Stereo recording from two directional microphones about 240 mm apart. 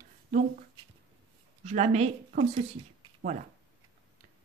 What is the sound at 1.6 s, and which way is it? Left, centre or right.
A woman's voice, right.